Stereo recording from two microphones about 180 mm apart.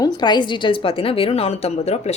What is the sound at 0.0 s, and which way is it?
A woman's voice, 25° left (ahead or behind).